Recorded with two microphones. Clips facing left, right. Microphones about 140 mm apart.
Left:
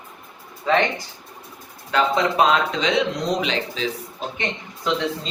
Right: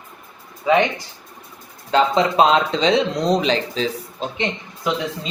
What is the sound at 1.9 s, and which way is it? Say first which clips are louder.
Speech: right 3 dB; 25° right (ahead or behind).